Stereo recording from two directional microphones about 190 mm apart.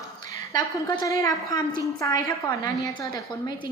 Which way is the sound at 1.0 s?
15° left (ahead or behind).